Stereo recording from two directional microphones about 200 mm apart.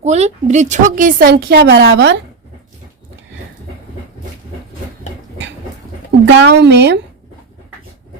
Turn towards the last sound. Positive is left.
turn(degrees=-60)  # may be behind; listen again after turning